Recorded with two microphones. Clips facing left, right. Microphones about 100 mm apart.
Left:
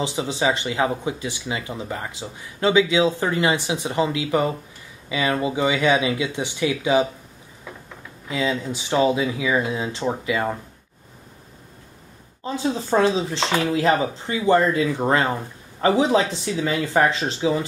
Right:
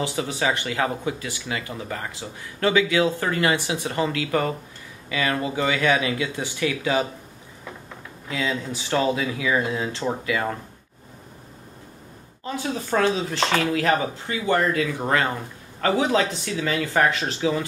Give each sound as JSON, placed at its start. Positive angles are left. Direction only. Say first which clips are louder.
{"t": 0.0, "sound": "speech", "louder": "left 2 dB", "side_deg": 20}
{"t": 8.3, "sound": "speech", "louder": "left 3 dB", "side_deg": 20}
{"t": 12.4, "sound": "speech", "louder": "left 4 dB", "side_deg": 25}